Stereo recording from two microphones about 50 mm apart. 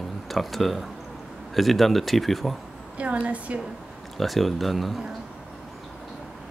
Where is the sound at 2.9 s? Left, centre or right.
Right.